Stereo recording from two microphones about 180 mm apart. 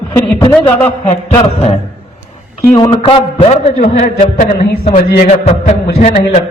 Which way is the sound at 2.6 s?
20° left (ahead or behind).